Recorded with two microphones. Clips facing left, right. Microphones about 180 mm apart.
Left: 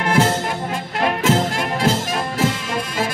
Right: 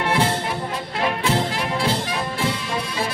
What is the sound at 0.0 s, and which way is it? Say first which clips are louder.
Music: left 3 dB; 45° left (ahead or behind).